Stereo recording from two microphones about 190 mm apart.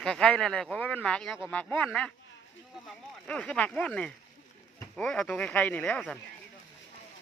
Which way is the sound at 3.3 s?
5° left (ahead or behind).